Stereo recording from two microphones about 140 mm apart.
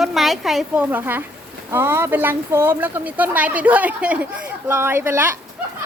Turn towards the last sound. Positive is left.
turn(degrees=-15)  # may be behind; listen again after turning